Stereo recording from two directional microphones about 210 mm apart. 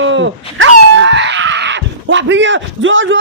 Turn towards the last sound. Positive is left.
turn(degrees=-65)  # may be behind; listen again after turning